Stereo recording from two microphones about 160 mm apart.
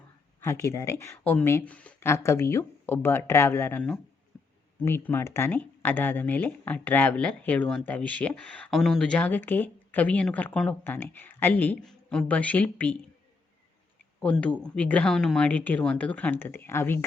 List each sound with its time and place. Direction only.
0.4 s speech: 20° left (ahead or behind)
14.2 s speech: 5° left (ahead or behind)